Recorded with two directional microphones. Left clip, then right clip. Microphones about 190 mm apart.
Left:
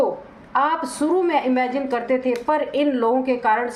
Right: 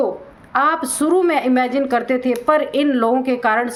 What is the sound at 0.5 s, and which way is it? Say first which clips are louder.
A woman's voice: right 3 dB; 50° right (ahead or behind).